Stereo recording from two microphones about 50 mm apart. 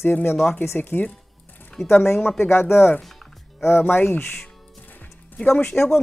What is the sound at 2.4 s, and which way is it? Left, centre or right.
Speech, left.